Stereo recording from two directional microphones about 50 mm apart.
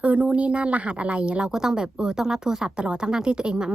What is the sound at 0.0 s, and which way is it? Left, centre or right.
A woman's voice, right.